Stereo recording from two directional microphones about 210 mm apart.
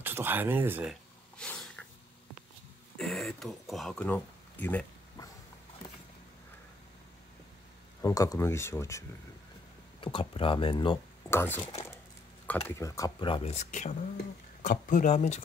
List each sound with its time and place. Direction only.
0.0 s speech: 10° right (ahead or behind)
1.4 s a sound: 5° left (ahead or behind)
3.0 s a sound: centre (ahead or behind)
8.0 s speech: 15° left (ahead or behind)
9.9 s speech: 25° left (ahead or behind)
11.2 s speech: 10° left (ahead or behind); by 15.4 s 35° left (ahead or behind)